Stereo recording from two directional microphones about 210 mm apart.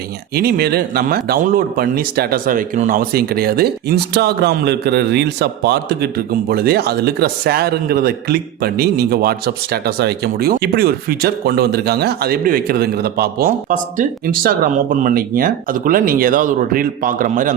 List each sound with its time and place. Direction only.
0.3 s speech: 45° right (ahead or behind)